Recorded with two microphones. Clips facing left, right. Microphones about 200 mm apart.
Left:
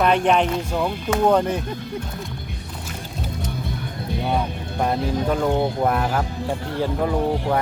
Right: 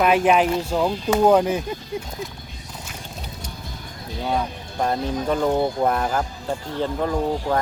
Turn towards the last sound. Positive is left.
turn(degrees=5)  # may be behind; listen again after turning